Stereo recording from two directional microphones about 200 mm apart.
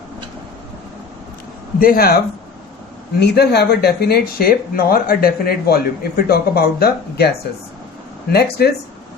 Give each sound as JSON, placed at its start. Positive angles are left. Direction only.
{"t": 1.8, "sound": "speech", "side_deg": 45}